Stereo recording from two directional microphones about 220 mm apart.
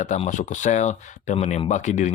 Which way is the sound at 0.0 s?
35° left (ahead or behind).